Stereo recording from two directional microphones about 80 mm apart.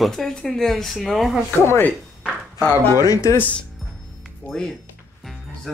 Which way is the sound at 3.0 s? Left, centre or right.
Left.